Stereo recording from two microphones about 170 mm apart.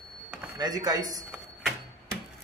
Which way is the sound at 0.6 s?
25° right (ahead or behind).